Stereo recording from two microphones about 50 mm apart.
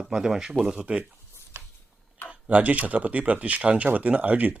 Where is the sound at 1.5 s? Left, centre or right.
Right.